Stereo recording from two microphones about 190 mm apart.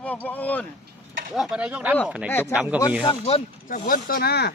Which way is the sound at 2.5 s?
5° right (ahead or behind).